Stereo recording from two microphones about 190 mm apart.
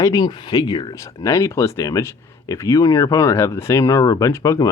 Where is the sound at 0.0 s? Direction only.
20° left (ahead or behind).